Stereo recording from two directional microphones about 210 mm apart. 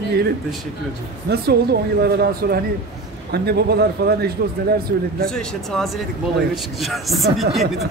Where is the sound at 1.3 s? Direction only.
50° right (ahead or behind).